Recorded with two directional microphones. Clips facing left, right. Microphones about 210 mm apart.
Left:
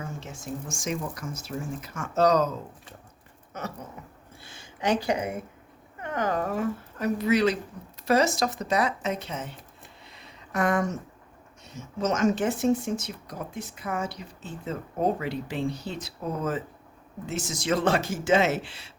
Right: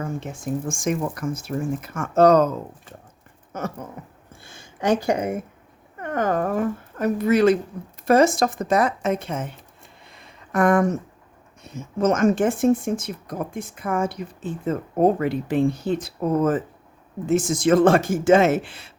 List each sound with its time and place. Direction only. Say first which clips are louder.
0.0 s speech: right 8 dB; 55° right (ahead or behind)
3.5 s speech: right 6 dB; 50° right (ahead or behind)
10.1 s a sound: right 6 dB; 50° right (ahead or behind)
11.6 s speech: right 7 dB; 55° right (ahead or behind)